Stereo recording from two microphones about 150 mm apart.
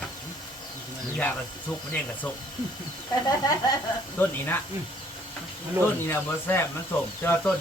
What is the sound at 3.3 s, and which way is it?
Speech, 25° left (ahead or behind).